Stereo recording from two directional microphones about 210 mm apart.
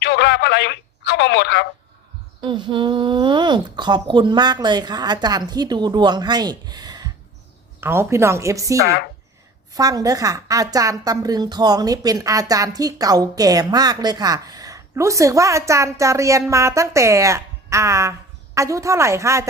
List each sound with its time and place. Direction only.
0.0 s telephone: 55° left (ahead or behind)
2.4 s a woman's voice: 20° right (ahead or behind)
8.8 s speech: 50° left (ahead or behind)
9.7 s a woman's voice: 15° right (ahead or behind)